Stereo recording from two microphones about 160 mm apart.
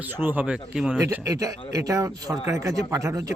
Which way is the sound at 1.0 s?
20° right (ahead or behind).